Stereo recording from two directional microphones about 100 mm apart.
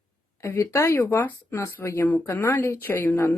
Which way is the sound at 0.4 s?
30° left (ahead or behind).